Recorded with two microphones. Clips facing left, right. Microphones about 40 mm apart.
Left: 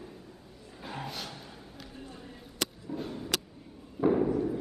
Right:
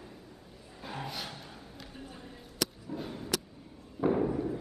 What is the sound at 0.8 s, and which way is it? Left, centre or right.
Music, centre.